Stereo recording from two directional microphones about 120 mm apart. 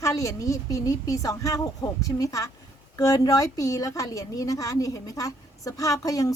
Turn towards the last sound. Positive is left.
turn(degrees=30)  # may be behind; listen again after turning